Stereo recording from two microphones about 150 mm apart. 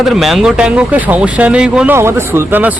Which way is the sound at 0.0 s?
Centre (ahead or behind).